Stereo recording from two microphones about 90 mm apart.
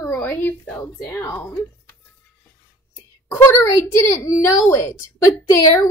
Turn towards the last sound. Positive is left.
turn(degrees=30)  # may be behind; listen again after turning